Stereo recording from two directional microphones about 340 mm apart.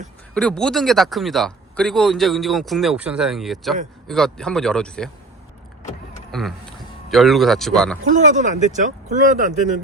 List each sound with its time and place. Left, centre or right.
0.3 s speech: centre
6.3 s speech: centre
8.1 s speech: right